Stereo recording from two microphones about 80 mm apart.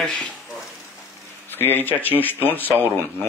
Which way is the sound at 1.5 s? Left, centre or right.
Left.